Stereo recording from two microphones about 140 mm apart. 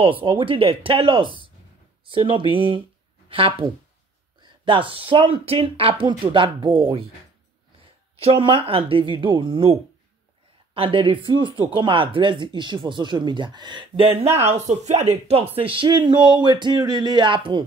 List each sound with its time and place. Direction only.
0.0 s speech: 40° right (ahead or behind)
8.2 s speech: 40° right (ahead or behind)
14.3 s speech: 50° right (ahead or behind)